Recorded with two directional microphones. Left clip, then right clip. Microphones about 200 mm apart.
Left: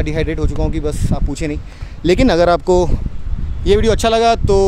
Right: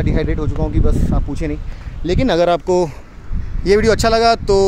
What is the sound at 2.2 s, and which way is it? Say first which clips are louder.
Speech: left 1 dB; 30° left (ahead or behind).